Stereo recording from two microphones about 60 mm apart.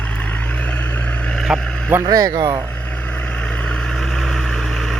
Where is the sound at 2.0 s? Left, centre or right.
Right.